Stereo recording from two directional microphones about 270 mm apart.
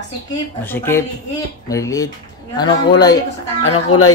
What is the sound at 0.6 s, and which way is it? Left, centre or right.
Speech, centre.